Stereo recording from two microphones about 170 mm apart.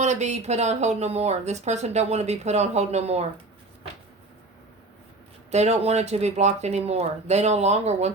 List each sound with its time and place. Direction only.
0.0 s speech: 45° right (ahead or behind)
5.5 s speech: 40° right (ahead or behind)